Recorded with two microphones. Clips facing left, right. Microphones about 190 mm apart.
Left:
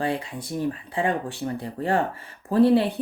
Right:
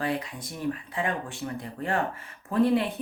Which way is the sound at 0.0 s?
30° left (ahead or behind).